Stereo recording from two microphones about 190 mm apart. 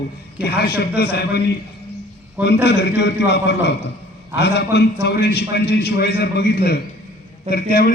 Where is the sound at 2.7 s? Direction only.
60° left (ahead or behind).